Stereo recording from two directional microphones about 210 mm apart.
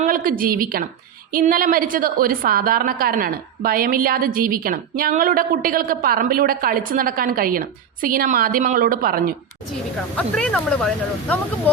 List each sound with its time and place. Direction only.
0.0 s a woman's voice: 40° right (ahead or behind)
10.2 s speech: 5° left (ahead or behind)